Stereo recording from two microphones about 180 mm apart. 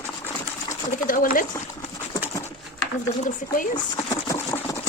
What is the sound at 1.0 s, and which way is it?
Speech, 50° left (ahead or behind).